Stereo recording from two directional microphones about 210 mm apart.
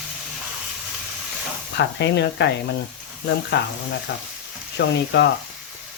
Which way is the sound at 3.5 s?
55° left (ahead or behind).